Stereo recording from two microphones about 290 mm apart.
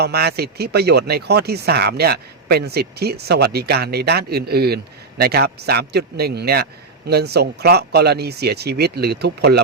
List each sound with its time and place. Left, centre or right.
0.0 s speech: right